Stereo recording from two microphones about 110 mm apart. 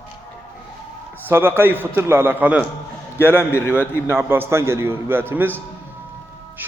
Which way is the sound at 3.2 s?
20° left (ahead or behind).